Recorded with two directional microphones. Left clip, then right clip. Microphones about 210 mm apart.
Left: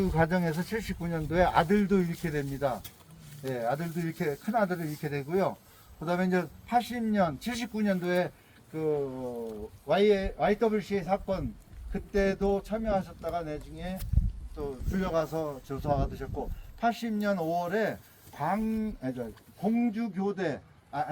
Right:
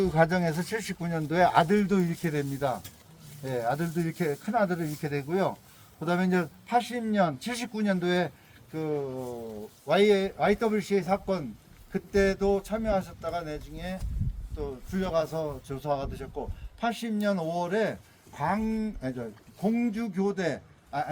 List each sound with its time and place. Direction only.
0.0 s a man's voice: 45° right (ahead or behind); by 21.1 s 60° right (ahead or behind)